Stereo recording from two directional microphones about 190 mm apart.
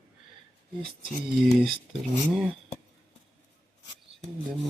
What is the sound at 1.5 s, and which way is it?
Speech, centre (ahead or behind).